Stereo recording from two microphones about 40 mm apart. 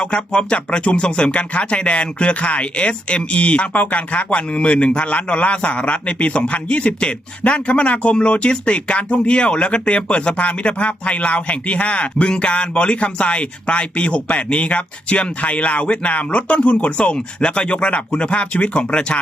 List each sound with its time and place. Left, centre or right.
0.0 s speech: left
17.2 s speech: left